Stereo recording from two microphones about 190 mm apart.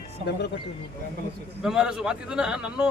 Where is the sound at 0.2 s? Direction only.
35° right (ahead or behind).